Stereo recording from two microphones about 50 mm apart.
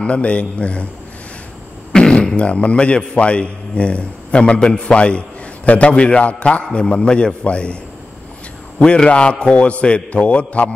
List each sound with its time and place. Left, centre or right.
0.0 s a man's voice: left
1.9 s fart: centre
3.2 s a man's voice: left
8.7 s a man's voice: left